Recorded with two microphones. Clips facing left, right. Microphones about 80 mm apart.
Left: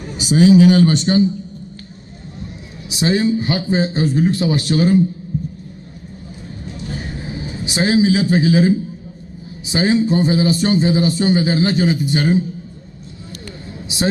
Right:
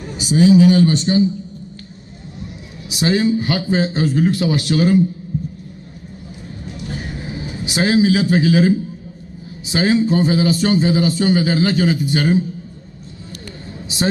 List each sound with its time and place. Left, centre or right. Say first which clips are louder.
0.2 s speech: left 1 dB; left
2.9 s a man's voice: even; left
6.9 s a sound: even; left
9.6 s a man's voice: even; left
13.8 s a man's voice: even; centre